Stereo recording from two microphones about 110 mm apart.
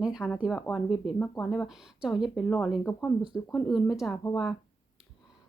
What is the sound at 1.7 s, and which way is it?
Speech, 5° right (ahead or behind).